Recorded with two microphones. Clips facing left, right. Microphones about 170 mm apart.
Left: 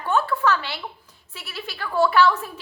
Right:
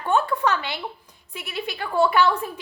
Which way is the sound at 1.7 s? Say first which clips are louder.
Even; 15° right (ahead or behind).